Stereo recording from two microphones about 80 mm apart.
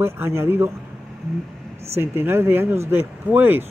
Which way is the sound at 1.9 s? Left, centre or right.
Right.